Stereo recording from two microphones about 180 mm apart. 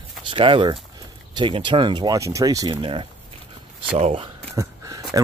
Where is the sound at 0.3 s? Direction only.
30° right (ahead or behind).